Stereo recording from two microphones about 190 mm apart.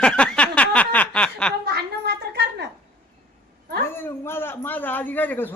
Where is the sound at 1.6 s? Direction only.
60° right (ahead or behind).